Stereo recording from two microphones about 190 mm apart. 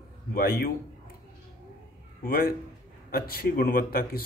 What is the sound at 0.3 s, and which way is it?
Speech, 55° left (ahead or behind).